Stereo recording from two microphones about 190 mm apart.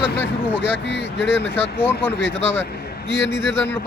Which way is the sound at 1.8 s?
10° left (ahead or behind).